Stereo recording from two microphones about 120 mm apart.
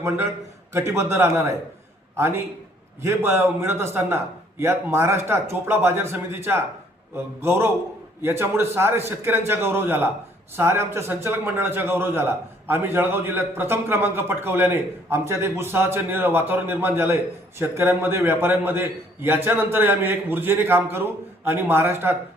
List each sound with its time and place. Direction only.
0.7 s a man's voice: 20° right (ahead or behind)